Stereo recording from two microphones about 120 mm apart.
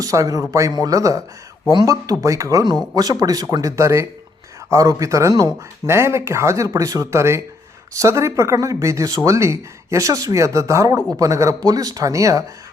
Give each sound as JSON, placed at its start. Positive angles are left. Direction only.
{"t": 0.0, "sound": "speech", "side_deg": -30}